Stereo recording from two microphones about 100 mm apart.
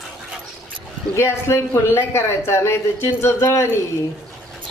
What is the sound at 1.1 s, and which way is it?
Speech, 25° left (ahead or behind).